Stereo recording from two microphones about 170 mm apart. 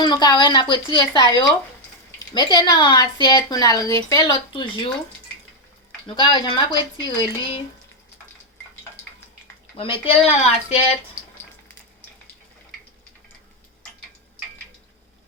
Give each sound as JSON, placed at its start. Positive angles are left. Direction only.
{"t": 0.0, "sound": "speech", "side_deg": 25}
{"t": 6.1, "sound": "speech", "side_deg": 30}
{"t": 10.2, "sound": "speech", "side_deg": 40}